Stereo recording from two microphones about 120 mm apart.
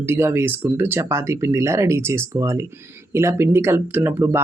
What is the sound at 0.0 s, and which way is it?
Speech, 20° right (ahead or behind).